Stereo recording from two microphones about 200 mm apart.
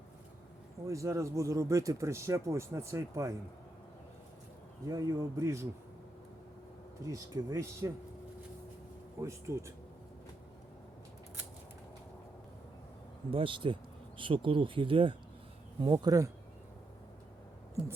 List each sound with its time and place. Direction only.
0.9 s speech: 15° right (ahead or behind)
4.9 s speech: 15° right (ahead or behind)
7.0 s speech: 15° right (ahead or behind)
9.2 s speech: 15° right (ahead or behind)
13.3 s speech: 25° right (ahead or behind)